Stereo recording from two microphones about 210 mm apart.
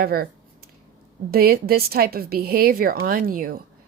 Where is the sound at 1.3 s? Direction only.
45° right (ahead or behind).